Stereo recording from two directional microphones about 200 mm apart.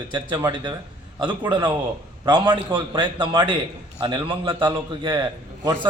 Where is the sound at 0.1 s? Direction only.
20° right (ahead or behind).